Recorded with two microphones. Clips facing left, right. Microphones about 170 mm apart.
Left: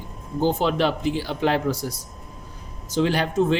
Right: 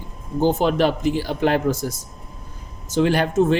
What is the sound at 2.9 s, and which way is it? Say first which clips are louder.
Speech: right 3 dB; 50° right (ahead or behind).